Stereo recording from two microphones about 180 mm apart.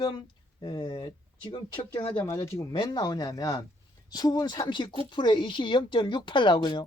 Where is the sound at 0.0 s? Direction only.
25° left (ahead or behind).